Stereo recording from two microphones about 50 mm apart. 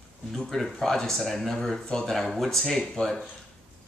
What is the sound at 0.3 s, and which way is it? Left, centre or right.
Speech, centre.